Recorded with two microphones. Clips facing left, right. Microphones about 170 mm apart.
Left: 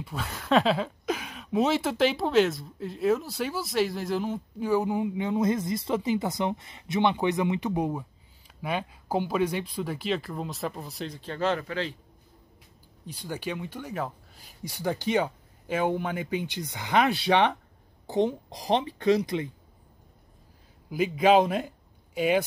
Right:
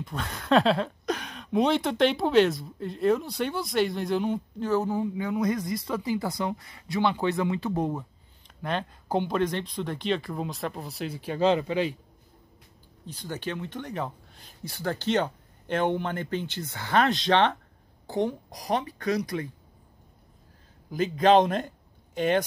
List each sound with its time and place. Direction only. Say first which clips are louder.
0.0 s speech: right 1 dB; 5° left (ahead or behind); by 11.9 s 15° right (ahead or behind)
13.0 s speech: even; 10° left (ahead or behind)
20.9 s speech: right 1 dB; 10° left (ahead or behind)